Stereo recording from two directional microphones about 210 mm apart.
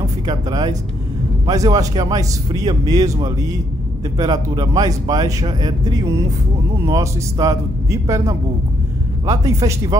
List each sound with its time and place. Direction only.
0.0 s speech: 20° right (ahead or behind)